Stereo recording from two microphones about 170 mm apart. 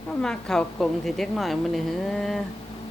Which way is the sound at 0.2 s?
5° left (ahead or behind).